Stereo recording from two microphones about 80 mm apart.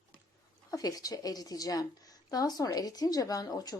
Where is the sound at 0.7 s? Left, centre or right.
Left.